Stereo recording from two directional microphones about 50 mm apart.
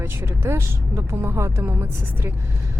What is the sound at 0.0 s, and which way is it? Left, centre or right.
Speech, right.